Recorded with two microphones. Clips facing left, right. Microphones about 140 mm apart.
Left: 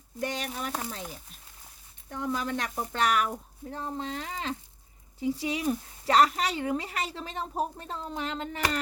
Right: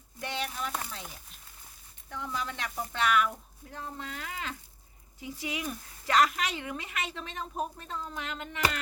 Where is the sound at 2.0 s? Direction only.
45° left (ahead or behind).